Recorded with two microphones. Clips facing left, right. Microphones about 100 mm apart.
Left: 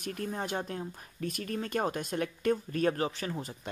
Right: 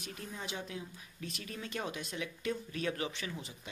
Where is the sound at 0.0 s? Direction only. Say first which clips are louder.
Left 9 dB; 50° left (ahead or behind).